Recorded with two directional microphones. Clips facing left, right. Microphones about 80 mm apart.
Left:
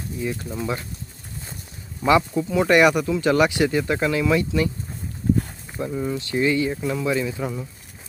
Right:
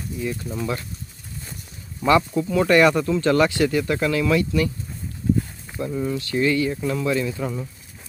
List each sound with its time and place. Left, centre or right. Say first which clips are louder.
0.4 s speech: right 1 dB; centre
2.0 s speech: even; centre
5.2 s a sound: even; left
5.8 s speech: right 1 dB; centre